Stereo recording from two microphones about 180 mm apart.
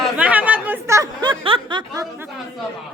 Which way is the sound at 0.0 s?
5° right (ahead or behind).